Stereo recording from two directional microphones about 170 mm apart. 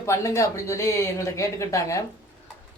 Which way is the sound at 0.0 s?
15° left (ahead or behind).